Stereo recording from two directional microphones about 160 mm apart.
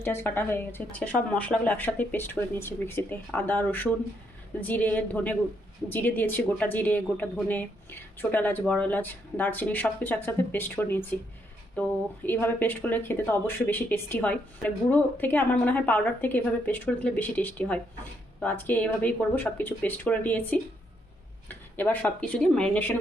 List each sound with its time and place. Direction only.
0.0 s a woman's voice: 15° left (ahead or behind)
21.8 s a woman's voice: 10° left (ahead or behind)